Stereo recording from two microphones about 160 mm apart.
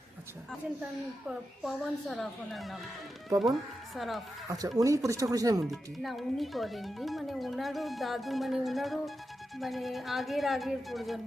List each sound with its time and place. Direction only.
1.3 s speech: centre (ahead or behind)
4.4 s speech: 20° right (ahead or behind)
5.6 s speech: centre (ahead or behind)